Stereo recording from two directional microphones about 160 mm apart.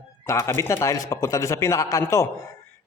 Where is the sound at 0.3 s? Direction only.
15° left (ahead or behind).